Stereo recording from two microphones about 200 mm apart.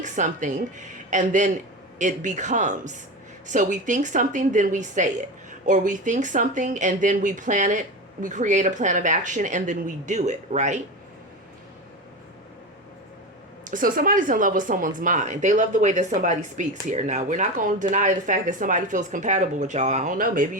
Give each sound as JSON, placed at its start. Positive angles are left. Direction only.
{"t": 0.0, "sound": "speech", "side_deg": -40}
{"t": 13.7, "sound": "speech", "side_deg": -45}